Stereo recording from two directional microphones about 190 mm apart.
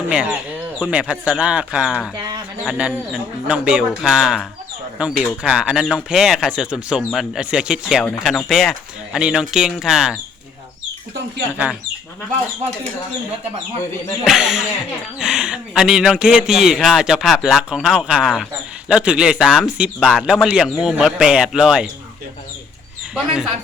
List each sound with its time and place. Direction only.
0.1 s a man's voice: 5° right (ahead or behind)
2.1 s bird: 20° right (ahead or behind)
2.6 s a man's voice: 5° right (ahead or behind)
11.5 s speech: 5° right (ahead or behind)
14.3 s a man's voice: centre (ahead or behind)
23.1 s a man's voice: 5° right (ahead or behind)